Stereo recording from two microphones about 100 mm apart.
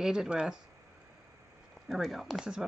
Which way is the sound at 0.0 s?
5° right (ahead or behind).